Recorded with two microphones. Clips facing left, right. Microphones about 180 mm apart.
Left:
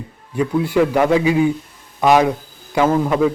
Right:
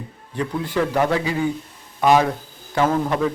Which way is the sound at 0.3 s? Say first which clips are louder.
Left 6 dB; 10° left (ahead or behind).